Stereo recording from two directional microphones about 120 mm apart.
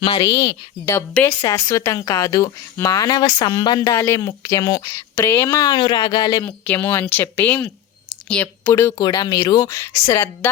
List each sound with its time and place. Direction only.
0.2 s speech: 30° left (ahead or behind)
5.5 s speech: 35° left (ahead or behind)
6.4 s speech: 15° left (ahead or behind)
8.6 s speech: 25° left (ahead or behind)